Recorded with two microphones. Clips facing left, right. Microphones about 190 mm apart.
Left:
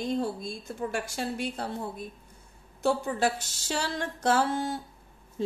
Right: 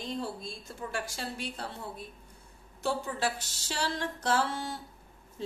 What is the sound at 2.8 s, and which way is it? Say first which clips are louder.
Speech: left 5 dB; 50° left (ahead or behind).